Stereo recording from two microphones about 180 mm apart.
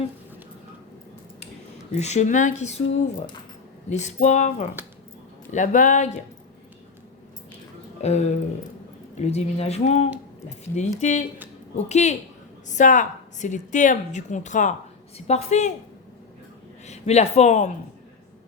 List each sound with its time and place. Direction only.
1.9 s speech: 40° left (ahead or behind)
3.8 s a woman's voice: 40° left (ahead or behind)
8.0 s a woman's voice: 40° left (ahead or behind)
16.8 s speech: 35° left (ahead or behind)